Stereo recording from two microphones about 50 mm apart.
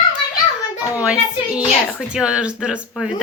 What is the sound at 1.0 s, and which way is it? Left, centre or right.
A child's voice, right.